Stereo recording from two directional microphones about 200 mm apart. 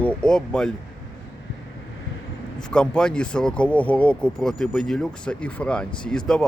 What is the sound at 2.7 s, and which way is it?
Speech, 5° left (ahead or behind).